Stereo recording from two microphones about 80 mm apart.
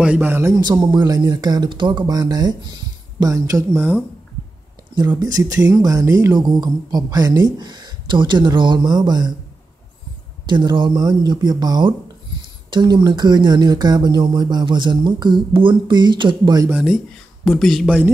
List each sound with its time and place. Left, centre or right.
0.0 s a man's voice: right
0.6 s speech: right
4.9 s speech: right
6.3 s speech: right
7.5 s speech: right
10.4 s speech: right
15.7 s speech: right
17.5 s speech: centre
17.8 s a man's voice: centre